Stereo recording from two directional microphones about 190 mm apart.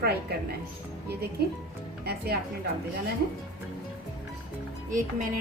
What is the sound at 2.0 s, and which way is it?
Speech, 55° right (ahead or behind).